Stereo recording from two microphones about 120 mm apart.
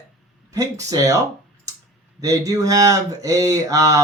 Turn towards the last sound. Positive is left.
turn(degrees=-30)  # may be behind; listen again after turning